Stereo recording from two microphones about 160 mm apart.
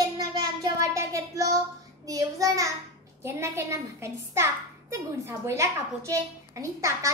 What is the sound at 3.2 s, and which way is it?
A child's voice, 15° right (ahead or behind).